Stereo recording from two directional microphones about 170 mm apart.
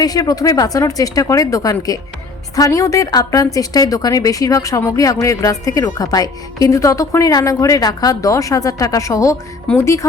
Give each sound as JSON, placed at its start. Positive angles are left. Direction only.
{"t": 0.0, "sound": "a woman's voice", "side_deg": 20}